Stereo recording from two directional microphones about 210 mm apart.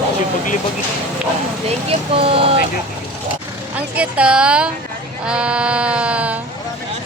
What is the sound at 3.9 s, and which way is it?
Speech, 5° right (ahead or behind).